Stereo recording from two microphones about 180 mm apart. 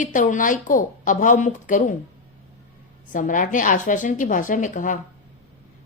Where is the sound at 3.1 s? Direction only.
45° left (ahead or behind).